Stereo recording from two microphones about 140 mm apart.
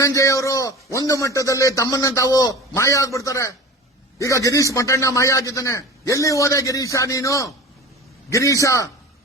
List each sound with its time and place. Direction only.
0.0 s a man's voice: 20° left (ahead or behind)